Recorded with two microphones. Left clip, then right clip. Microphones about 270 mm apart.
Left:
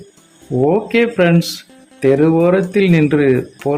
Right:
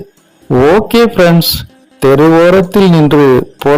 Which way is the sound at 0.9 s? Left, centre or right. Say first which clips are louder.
Right 6 dB; right.